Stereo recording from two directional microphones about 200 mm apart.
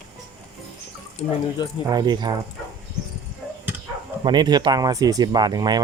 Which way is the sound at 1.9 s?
20° right (ahead or behind).